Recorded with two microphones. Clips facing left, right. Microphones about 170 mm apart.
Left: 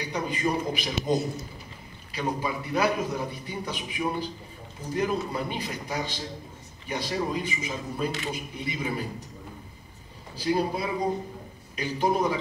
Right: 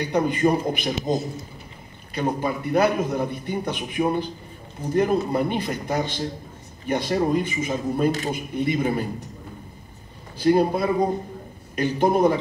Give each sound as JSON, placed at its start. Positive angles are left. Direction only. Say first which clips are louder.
{"t": 0.0, "sound": "a man's voice", "louder": "right 8 dB", "side_deg": -55}
{"t": 2.4, "sound": "a man's voice", "louder": "right 6 dB", "side_deg": -55}
{"t": 10.3, "sound": "a man's voice", "louder": "right 7 dB", "side_deg": -55}